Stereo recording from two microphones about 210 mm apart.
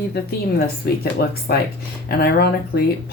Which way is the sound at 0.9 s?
45° left (ahead or behind).